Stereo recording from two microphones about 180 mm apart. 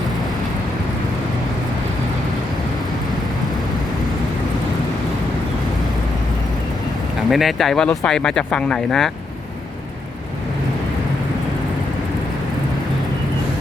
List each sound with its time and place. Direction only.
7.3 s speech: centre (ahead or behind)